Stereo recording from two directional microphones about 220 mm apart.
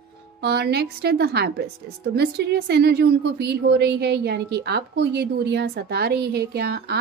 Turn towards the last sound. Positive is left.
turn(degrees=-45)  # may be behind; listen again after turning